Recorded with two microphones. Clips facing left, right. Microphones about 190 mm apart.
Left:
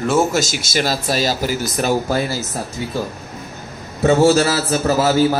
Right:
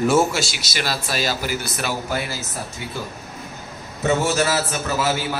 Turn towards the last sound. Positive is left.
turn(degrees=40)  # may be behind; listen again after turning